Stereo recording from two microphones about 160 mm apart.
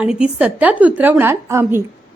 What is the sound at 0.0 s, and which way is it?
A woman's voice, 5° right (ahead or behind).